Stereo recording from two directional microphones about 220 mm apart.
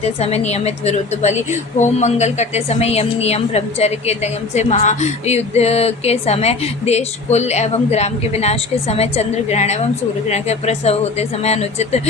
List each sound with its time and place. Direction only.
0.0 s a woman's voice: 30° left (ahead or behind)